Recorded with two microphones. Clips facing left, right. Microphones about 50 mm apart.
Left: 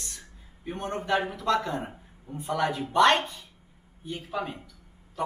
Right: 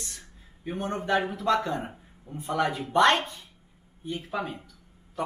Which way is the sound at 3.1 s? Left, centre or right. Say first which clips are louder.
Even; centre.